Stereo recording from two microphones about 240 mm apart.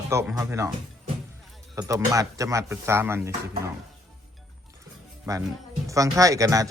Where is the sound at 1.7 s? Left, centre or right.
Centre.